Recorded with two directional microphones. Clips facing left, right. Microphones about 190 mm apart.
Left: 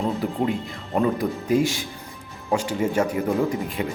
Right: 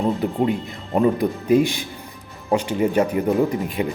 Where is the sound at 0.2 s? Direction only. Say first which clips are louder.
Right 3 dB; 20° right (ahead or behind).